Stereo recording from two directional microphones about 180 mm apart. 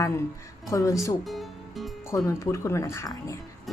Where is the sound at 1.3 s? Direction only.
Centre (ahead or behind).